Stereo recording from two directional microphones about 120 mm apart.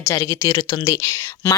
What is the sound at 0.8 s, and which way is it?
Speech, 25° left (ahead or behind).